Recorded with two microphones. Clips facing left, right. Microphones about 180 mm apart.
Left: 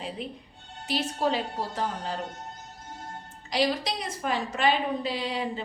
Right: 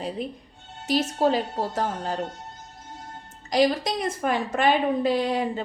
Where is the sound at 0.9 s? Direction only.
45° right (ahead or behind).